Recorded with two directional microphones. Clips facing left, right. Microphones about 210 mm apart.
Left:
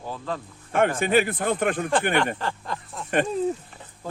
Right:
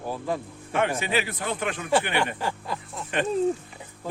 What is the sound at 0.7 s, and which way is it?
Speech, 50° left (ahead or behind).